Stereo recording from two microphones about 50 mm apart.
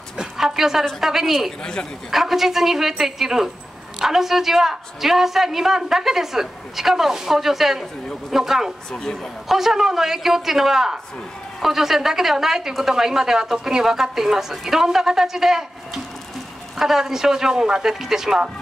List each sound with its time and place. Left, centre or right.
0.2 s a sound: centre
1.0 s a woman's voice: centre
1.6 s a woman's voice: centre
2.0 s a woman's voice: centre
8.9 s a woman's voice: centre
9.5 s a woman's voice: centre
16.7 s a woman's voice: centre